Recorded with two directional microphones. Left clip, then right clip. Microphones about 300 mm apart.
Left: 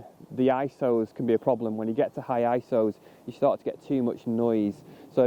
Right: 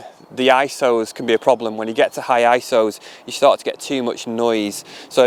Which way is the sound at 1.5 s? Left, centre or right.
Right.